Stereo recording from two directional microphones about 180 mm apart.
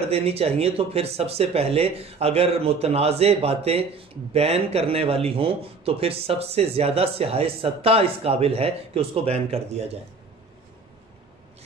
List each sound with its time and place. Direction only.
0.1 s speech: 35° right (ahead or behind)